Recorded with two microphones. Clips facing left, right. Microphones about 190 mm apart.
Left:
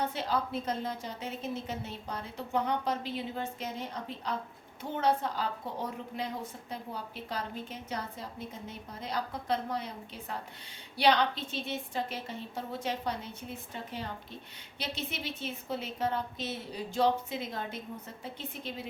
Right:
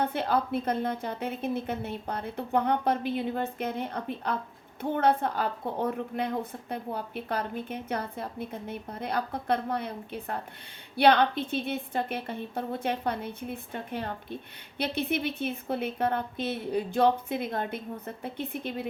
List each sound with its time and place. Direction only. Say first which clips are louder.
0.0 s a woman's voice: right 5 dB; 55° right (ahead or behind)